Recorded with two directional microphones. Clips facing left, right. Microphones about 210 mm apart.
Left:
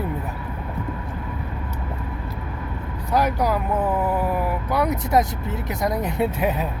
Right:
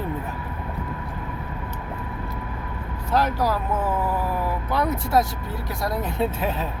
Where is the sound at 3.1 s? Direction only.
15° left (ahead or behind).